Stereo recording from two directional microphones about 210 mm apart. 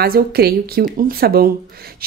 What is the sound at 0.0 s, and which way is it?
A woman's voice, 50° right (ahead or behind).